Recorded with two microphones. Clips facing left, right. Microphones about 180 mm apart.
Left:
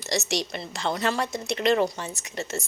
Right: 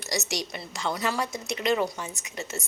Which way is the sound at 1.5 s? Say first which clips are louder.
Left 4 dB; 10° right (ahead or behind).